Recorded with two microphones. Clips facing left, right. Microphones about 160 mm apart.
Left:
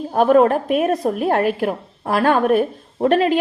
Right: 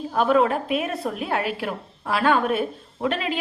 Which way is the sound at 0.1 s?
45° left (ahead or behind).